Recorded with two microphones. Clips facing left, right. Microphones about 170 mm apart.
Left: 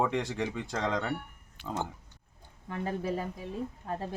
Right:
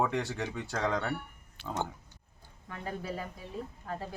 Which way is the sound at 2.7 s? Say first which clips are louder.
Left 5 dB; 25° left (ahead or behind).